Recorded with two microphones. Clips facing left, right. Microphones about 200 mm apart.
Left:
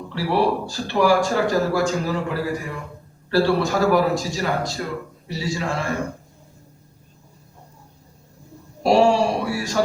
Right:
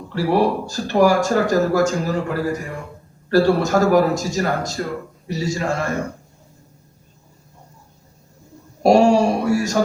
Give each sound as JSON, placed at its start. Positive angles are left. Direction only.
{"t": 0.1, "sound": "speech", "side_deg": -45}
{"t": 8.8, "sound": "speech", "side_deg": -45}